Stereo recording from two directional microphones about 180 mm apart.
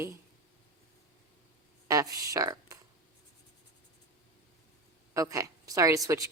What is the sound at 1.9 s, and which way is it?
Speech, 20° right (ahead or behind).